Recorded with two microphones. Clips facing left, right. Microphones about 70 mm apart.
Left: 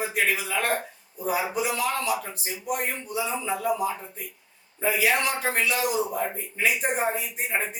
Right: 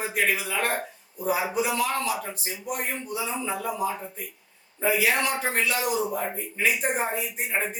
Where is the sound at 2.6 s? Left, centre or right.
Centre.